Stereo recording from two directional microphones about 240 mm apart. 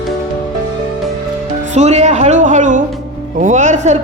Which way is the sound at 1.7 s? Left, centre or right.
Right.